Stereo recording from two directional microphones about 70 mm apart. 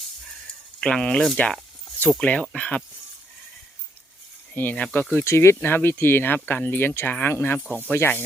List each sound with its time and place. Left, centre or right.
0.8 s speech: centre
4.5 s speech: left
5.1 s speech: left
7.9 s speech: left